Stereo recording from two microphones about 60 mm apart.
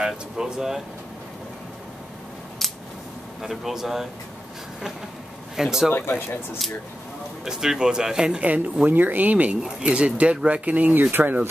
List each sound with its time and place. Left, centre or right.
0.0 s speech: centre
2.6 s scissors: centre
3.4 s speech: centre
5.6 s speech: centre
5.9 s speech: left
7.4 s speech: centre; by 11.4 s right